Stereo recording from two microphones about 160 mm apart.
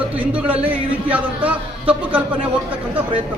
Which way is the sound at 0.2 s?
10° right (ahead or behind).